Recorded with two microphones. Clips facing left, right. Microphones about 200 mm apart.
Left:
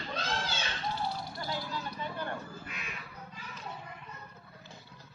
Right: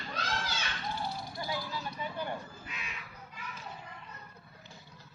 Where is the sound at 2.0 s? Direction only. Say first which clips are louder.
Right 2 dB; 10° right (ahead or behind).